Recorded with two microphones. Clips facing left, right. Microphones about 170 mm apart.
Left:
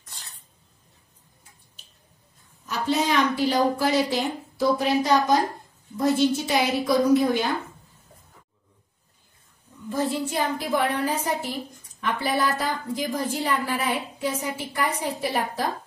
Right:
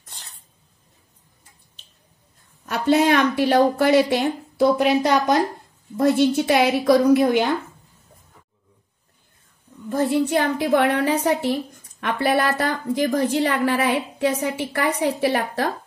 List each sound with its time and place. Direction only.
2.6 s a woman's voice: 65° right (ahead or behind)
9.8 s a woman's voice: 60° right (ahead or behind)